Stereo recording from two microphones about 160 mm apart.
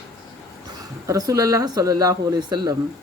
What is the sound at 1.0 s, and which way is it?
Speech, 20° right (ahead or behind).